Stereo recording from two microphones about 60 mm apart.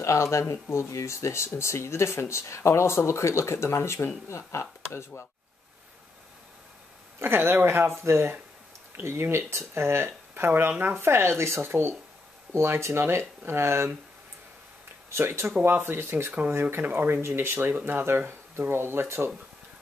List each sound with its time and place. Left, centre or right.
0.0 s speech: left
7.2 s speech: right
15.0 s speech: right